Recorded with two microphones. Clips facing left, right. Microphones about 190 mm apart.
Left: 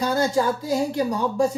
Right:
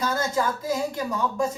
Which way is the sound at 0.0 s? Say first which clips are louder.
Left 4 dB; 35° left (ahead or behind).